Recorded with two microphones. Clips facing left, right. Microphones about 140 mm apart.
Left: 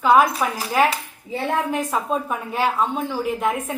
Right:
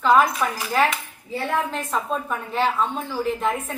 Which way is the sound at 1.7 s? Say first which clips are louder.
Left 3 dB; 10° left (ahead or behind).